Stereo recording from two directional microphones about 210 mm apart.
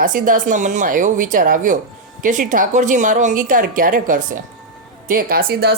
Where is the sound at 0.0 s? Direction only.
40° right (ahead or behind).